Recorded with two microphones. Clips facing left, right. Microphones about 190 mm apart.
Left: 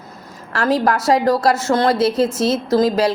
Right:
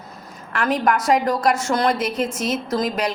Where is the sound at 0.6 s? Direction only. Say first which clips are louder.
Left 3 dB; 30° left (ahead or behind).